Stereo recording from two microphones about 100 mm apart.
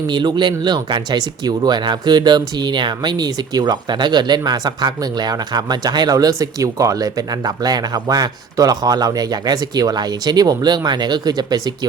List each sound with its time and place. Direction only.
0.1 s speech: 50° right (ahead or behind)